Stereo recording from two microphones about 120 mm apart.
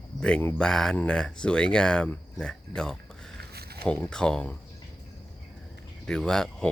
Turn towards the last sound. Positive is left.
turn(degrees=5)  # may be behind; listen again after turning